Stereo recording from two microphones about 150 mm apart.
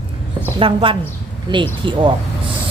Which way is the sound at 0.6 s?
35° right (ahead or behind).